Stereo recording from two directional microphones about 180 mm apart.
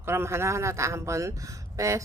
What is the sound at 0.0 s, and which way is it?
Speech, 15° right (ahead or behind).